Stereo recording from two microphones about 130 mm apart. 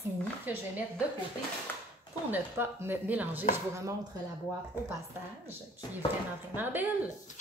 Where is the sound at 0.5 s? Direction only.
15° right (ahead or behind).